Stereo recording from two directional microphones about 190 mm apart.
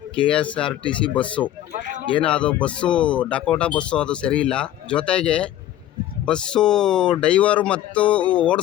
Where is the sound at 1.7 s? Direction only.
45° right (ahead or behind).